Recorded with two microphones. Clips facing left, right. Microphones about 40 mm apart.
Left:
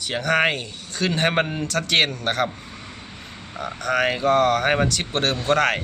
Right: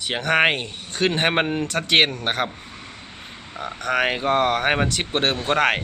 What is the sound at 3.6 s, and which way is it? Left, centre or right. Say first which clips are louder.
Speech: even; centre.